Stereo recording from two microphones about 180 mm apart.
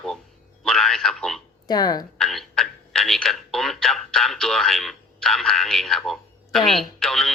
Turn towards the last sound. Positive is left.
turn(degrees=0)  # may be behind; listen again after turning